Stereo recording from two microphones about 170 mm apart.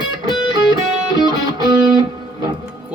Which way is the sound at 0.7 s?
25° right (ahead or behind).